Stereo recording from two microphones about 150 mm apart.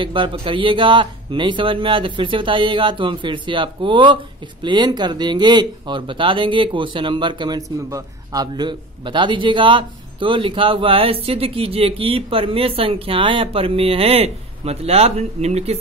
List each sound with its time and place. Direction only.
0.0 s speech: 35° right (ahead or behind)